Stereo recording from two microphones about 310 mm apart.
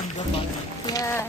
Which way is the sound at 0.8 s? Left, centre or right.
Centre.